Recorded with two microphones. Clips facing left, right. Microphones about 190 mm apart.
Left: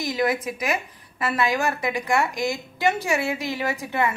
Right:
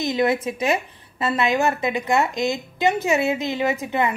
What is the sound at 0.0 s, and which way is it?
A woman's voice, 25° right (ahead or behind).